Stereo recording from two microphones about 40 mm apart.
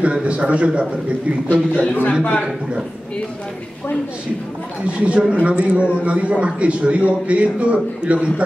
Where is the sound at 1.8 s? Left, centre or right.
Left.